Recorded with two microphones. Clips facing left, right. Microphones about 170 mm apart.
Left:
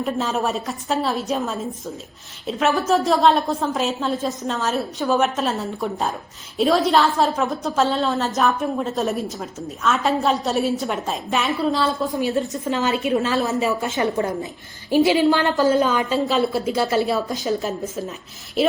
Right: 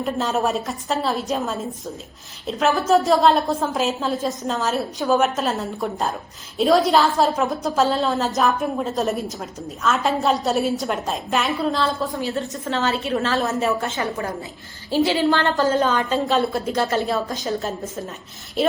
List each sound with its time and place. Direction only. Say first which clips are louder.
0.0 s a woman's voice: right 1 dB; centre (ahead or behind)
12.1 s a woman's voice: left 4 dB; 20° left (ahead or behind)
13.4 s a woman's voice: even; centre (ahead or behind)
13.9 s a woman's voice: left 4 dB; 20° left (ahead or behind); by 18.7 s 5° left (ahead or behind)